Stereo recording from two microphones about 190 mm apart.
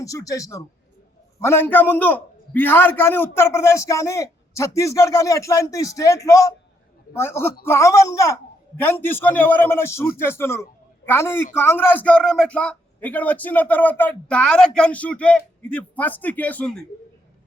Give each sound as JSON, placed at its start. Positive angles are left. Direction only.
{"t": 0.0, "sound": "a man's voice", "side_deg": 15}